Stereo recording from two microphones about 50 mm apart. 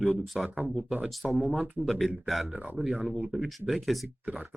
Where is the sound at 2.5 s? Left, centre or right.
Right.